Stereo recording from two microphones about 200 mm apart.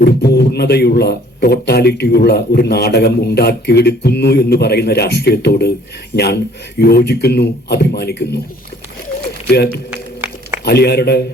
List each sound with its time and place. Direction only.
0.0 s a man's voice: 55° left (ahead or behind)
10.7 s a man's voice: 55° left (ahead or behind)